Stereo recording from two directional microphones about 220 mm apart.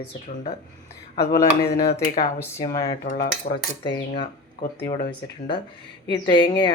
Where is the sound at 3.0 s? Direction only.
35° left (ahead or behind).